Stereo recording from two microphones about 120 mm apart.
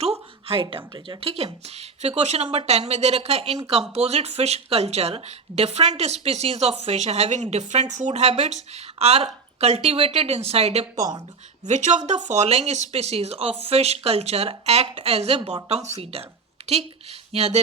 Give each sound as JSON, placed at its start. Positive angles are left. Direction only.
{"t": 0.0, "sound": "a sound", "side_deg": -55}
{"t": 0.9, "sound": "speech", "side_deg": -35}
{"t": 1.2, "sound": "speech", "side_deg": -55}
{"t": 10.9, "sound": "speech", "side_deg": -30}
{"t": 11.6, "sound": "speech", "side_deg": -80}